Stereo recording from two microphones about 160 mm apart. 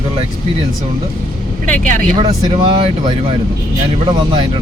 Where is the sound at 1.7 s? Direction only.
55° right (ahead or behind).